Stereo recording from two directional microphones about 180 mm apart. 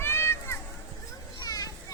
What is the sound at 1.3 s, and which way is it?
Children playing, 20° left (ahead or behind).